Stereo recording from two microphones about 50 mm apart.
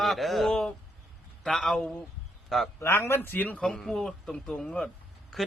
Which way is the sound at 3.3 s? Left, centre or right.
Left.